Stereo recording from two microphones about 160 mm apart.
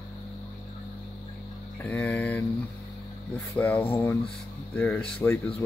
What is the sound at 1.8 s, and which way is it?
Speech, 15° left (ahead or behind).